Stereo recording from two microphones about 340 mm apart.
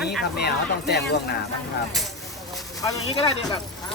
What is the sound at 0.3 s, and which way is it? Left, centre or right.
Speech, left.